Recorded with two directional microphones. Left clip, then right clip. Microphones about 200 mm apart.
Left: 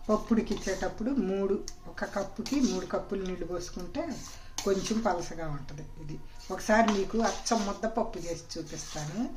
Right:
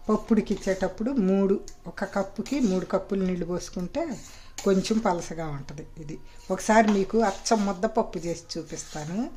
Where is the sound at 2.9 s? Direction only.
50° right (ahead or behind).